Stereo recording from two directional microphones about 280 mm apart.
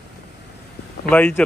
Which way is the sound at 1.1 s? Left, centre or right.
Centre.